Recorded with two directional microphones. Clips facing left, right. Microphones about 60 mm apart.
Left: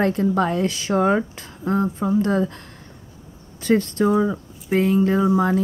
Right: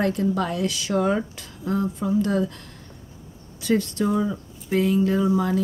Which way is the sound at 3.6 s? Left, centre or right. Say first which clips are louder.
Left 4 dB; left.